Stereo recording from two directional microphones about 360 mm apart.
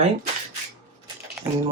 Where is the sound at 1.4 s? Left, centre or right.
Centre.